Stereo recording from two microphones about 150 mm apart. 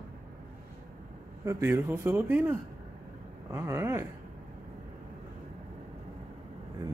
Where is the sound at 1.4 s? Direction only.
15° right (ahead or behind).